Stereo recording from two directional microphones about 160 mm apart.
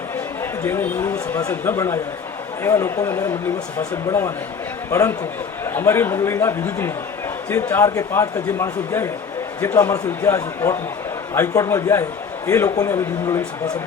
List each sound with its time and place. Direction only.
0.6 s a man's voice: 15° left (ahead or behind)